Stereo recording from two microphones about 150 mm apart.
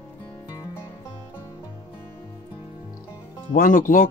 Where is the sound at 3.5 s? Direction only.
65° left (ahead or behind).